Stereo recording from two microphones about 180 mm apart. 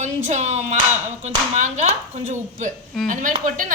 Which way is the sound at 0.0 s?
40° right (ahead or behind).